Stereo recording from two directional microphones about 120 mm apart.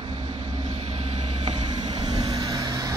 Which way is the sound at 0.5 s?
65° right (ahead or behind).